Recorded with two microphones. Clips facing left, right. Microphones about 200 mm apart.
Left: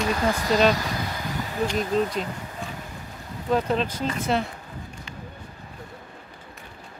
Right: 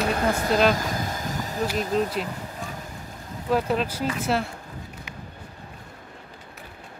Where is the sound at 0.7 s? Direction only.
45° right (ahead or behind).